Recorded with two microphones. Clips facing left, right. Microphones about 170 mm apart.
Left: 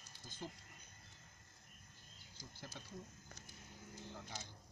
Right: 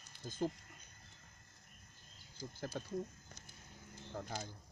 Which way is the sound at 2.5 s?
50° right (ahead or behind).